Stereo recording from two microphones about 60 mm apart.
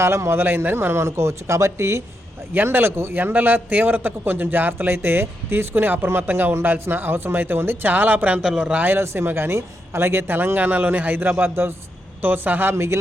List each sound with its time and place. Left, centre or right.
0.0 s a man's voice: right
2.5 s a man's voice: right
8.4 s a man's voice: centre
8.8 s a man's voice: right
12.7 s a man's voice: right